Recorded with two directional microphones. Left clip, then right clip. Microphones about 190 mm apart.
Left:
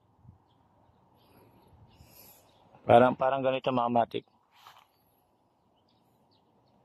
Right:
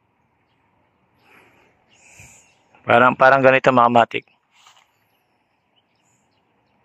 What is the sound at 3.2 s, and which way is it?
Speech, 65° right (ahead or behind).